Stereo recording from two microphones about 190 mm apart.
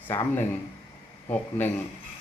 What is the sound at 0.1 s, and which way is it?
A man's voice, 10° left (ahead or behind).